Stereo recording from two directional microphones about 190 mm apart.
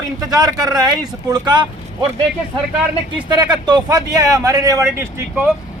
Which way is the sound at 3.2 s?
20° right (ahead or behind).